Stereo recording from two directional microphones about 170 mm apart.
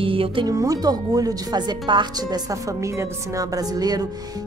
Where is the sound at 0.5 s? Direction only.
20° right (ahead or behind).